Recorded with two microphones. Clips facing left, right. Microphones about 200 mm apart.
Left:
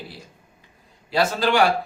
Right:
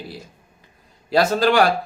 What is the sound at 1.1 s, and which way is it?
Speech, 40° right (ahead or behind).